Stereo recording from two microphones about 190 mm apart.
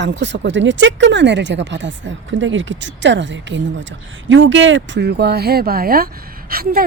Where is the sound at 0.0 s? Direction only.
70° right (ahead or behind).